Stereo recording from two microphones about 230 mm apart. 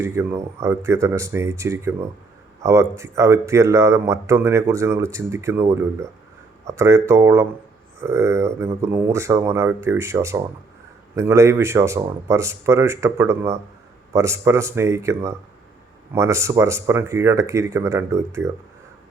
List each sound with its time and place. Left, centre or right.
0.0 s speech: centre